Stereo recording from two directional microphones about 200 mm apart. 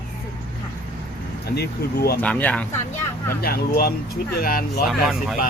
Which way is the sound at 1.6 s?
50° left (ahead or behind).